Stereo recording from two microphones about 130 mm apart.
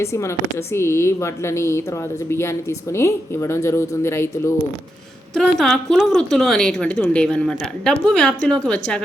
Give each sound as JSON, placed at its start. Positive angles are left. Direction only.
{"t": 0.0, "sound": "a woman's voice", "side_deg": 20}
{"t": 5.3, "sound": "a woman's voice", "side_deg": 5}